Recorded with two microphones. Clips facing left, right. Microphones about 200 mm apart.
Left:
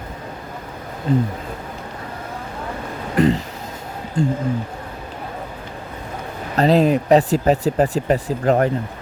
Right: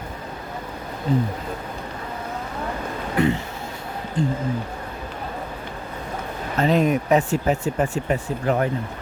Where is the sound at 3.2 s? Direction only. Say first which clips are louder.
Left 4 dB; 35° left (ahead or behind).